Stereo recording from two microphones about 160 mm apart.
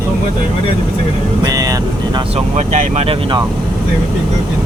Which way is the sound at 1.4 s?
25° right (ahead or behind).